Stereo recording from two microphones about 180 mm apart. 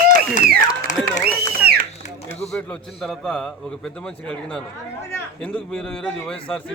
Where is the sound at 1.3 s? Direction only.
60° right (ahead or behind).